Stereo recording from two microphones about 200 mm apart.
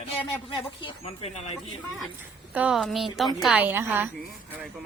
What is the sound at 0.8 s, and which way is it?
Speech, 30° left (ahead or behind).